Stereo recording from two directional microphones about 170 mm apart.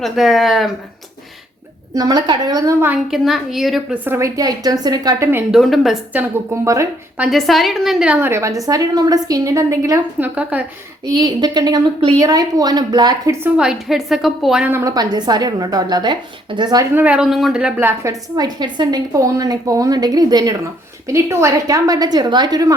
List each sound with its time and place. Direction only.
0.0 s a woman's voice: centre (ahead or behind)
1.9 s a woman's voice: 25° right (ahead or behind)
3.1 s a woman's voice: centre (ahead or behind)
5.5 s a woman's voice: centre (ahead or behind)
6.5 s a woman's voice: 15° right (ahead or behind)
7.3 s a woman's voice: centre (ahead or behind)
11.0 s a woman's voice: 25° right (ahead or behind)
13.4 s a woman's voice: 5° right (ahead or behind)
14.7 s a woman's voice: 15° right (ahead or behind)
16.9 s a woman's voice: 10° right (ahead or behind); by 22.6 s 25° right (ahead or behind)